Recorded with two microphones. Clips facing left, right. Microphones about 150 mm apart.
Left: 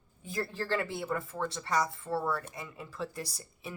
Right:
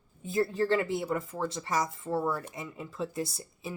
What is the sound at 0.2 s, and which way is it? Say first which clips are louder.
Speech: right 8 dB; 25° right (ahead or behind).